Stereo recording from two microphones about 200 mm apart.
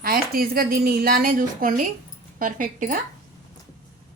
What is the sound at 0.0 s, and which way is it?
Speech, 45° right (ahead or behind).